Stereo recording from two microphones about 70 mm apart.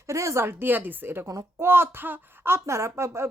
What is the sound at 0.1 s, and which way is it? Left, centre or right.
Speech, right.